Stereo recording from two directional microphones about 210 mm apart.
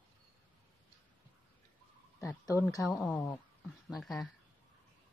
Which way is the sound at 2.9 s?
Centre (ahead or behind).